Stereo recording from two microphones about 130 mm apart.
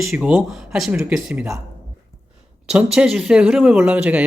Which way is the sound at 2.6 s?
5° right (ahead or behind).